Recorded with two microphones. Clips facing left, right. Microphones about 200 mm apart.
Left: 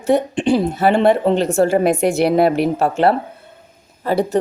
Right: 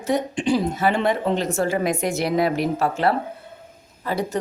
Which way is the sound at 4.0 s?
30° left (ahead or behind).